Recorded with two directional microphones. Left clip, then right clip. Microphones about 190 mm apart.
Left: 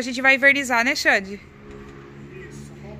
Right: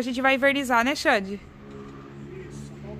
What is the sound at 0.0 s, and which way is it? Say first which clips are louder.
Speech: left 5 dB; 15° right (ahead or behind).